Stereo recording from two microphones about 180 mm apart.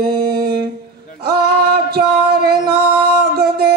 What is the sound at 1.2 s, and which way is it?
Music, 60° right (ahead or behind).